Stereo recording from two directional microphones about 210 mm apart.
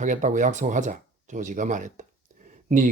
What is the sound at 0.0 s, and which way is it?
Speech, 35° right (ahead or behind).